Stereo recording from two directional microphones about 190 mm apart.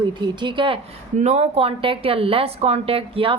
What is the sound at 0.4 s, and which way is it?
A woman's voice, 25° right (ahead or behind).